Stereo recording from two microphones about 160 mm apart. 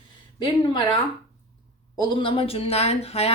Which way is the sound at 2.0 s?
30° left (ahead or behind).